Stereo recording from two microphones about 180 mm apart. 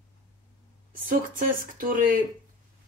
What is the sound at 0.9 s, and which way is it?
Speech, 50° right (ahead or behind).